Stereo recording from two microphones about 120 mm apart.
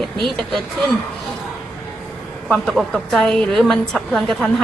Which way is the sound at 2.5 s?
Centre (ahead or behind).